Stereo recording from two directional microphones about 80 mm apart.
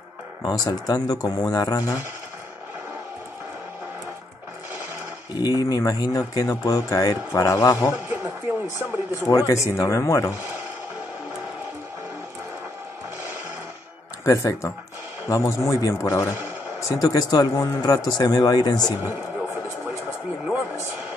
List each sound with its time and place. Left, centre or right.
0.4 s speech: left
5.3 s speech: left
8.1 s speech: right
9.1 s speech: left
14.2 s a man's voice: left
16.8 s speech: left